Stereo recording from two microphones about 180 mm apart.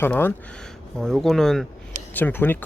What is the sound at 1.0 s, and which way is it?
Speech, centre (ahead or behind).